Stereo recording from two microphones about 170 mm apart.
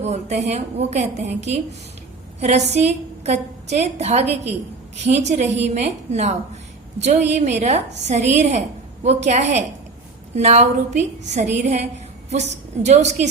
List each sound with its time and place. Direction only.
0.0 s a woman's voice: 40° right (ahead or behind)